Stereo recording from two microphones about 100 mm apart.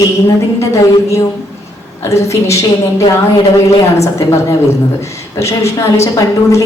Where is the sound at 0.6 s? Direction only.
30° left (ahead or behind).